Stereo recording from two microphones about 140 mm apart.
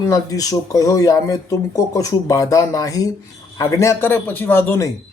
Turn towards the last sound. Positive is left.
turn(degrees=15)  # may be behind; listen again after turning